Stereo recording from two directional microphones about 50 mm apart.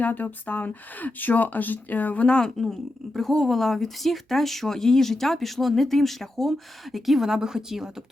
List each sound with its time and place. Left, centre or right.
0.0 s speech: left
2.2 s speech: centre
2.6 s speech: centre